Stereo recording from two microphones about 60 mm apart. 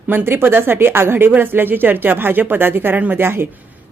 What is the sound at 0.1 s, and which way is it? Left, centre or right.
A woman's voice, right.